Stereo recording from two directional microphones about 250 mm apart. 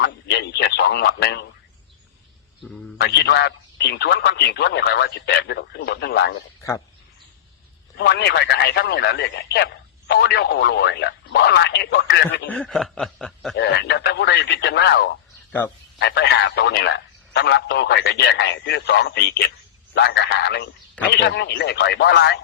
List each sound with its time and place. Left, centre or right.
0.0 s radio: left
3.0 s a man's voice: left
6.6 s speech: centre
7.9 s a man's voice: left
12.5 s snicker: centre
13.6 s a man's voice: left